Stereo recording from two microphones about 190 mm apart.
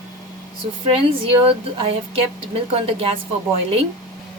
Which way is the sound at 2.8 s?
30° right (ahead or behind).